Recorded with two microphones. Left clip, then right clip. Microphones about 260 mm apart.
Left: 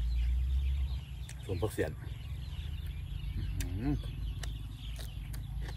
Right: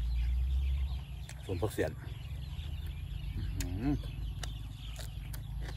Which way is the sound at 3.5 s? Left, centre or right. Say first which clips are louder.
Right 2 dB; centre.